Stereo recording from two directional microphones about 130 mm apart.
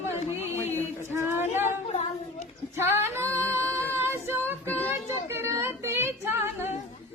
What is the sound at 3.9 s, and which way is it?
Child singing, 20° right (ahead or behind).